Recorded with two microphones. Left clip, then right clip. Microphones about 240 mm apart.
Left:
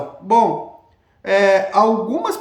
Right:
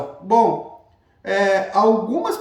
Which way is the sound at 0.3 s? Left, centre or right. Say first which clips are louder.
Left 1 dB; centre.